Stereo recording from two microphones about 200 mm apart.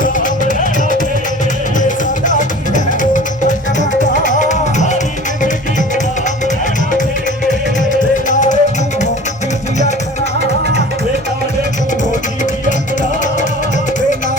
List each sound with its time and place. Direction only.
0.0 s music: 40° left (ahead or behind)
2.2 s music: 40° left (ahead or behind)
7.8 s music: 40° left (ahead or behind)
12.6 s music: 40° left (ahead or behind)